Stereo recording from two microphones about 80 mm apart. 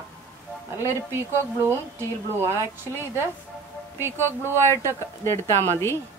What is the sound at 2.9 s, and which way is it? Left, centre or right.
Speech, right.